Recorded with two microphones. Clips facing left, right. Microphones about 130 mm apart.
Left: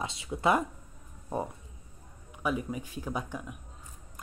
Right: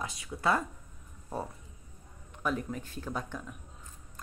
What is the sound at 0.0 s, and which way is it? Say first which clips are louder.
Speech: left 3 dB; 25° left (ahead or behind).